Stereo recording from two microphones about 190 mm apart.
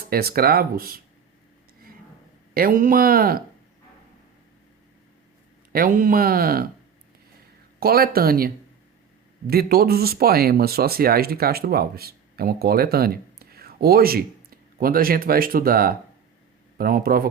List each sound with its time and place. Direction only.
0.0 s speech: 55° right (ahead or behind)
2.6 s speech: 45° right (ahead or behind)
5.7 s speech: 45° right (ahead or behind)
7.8 s speech: 55° right (ahead or behind)